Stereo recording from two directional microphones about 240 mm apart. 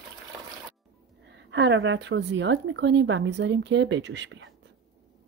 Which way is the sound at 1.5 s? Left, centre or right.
Right.